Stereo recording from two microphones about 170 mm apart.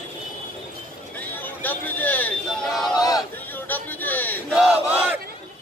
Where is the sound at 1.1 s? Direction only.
10° left (ahead or behind).